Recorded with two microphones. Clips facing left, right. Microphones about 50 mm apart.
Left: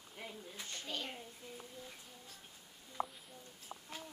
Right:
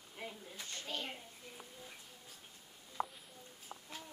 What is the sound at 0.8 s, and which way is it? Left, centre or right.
Speech, centre.